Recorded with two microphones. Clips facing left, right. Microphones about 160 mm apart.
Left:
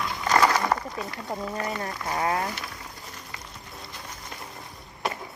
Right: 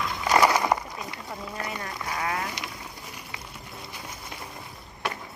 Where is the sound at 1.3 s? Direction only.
35° left (ahead or behind).